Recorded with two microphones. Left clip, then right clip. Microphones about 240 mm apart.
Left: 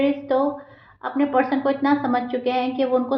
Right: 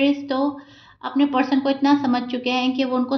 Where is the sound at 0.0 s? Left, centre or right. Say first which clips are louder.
Left 1 dB; right.